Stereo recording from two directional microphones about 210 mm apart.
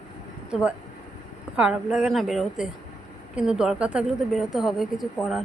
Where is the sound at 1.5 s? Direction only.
5° right (ahead or behind).